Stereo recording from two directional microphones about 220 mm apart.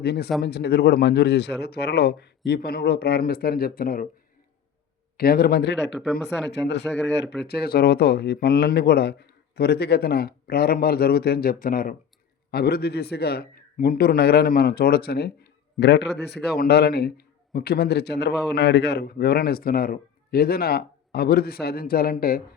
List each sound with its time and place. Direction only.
0.0 s a man's voice: 45° left (ahead or behind)
5.1 s a man's voice: 45° left (ahead or behind)